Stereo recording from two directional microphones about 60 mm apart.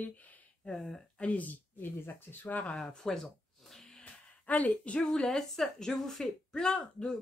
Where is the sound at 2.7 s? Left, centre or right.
Centre.